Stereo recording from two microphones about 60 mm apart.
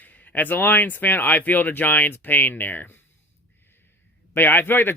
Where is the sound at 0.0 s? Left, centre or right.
Left.